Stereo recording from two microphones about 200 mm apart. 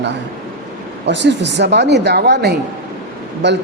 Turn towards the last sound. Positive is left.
turn(degrees=-60)  # may be behind; listen again after turning